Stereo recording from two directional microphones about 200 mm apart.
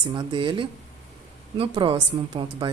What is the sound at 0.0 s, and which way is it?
A woman's voice, 25° right (ahead or behind).